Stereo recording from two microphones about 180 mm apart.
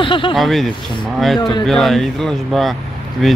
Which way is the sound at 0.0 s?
30° left (ahead or behind).